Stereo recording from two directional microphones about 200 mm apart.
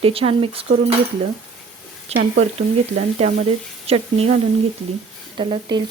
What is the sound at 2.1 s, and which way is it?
Speech, 30° right (ahead or behind).